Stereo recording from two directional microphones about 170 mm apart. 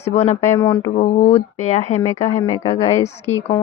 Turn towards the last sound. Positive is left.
turn(degrees=40)  # may be behind; listen again after turning